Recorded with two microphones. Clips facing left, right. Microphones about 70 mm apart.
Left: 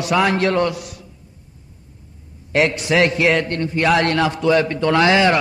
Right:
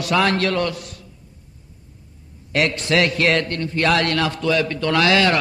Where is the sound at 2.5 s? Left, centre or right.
Centre.